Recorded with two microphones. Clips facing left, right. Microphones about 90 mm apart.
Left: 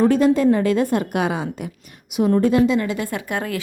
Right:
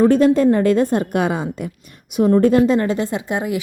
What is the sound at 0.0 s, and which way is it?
A woman's voice, 45° right (ahead or behind).